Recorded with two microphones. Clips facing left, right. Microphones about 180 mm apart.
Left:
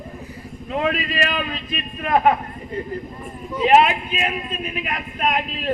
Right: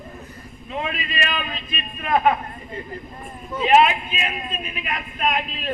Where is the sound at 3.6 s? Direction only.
45° left (ahead or behind).